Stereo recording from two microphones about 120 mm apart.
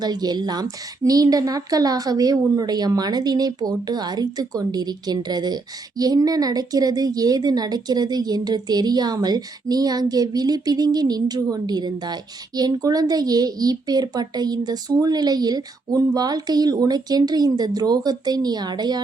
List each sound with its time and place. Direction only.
0.0 s a woman's voice: 35° right (ahead or behind)